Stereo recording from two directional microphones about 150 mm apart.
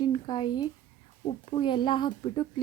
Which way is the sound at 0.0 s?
30° left (ahead or behind).